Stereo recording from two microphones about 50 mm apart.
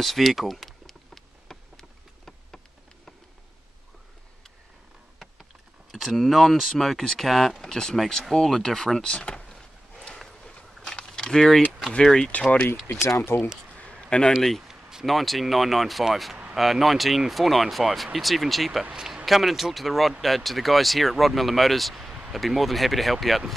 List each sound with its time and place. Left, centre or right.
0.0 s a sound: centre
5.9 s speech: centre
7.7 s speech: centre
10.1 s a sound: centre
10.9 s walk: centre
11.9 s speech: centre
12.3 s speech: left
13.0 s speech: left
14.0 s speech: centre
14.7 s a sound: centre
15.0 s speech: centre